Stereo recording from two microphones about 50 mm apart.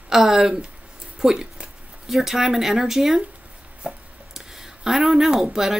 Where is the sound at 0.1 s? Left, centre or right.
Centre.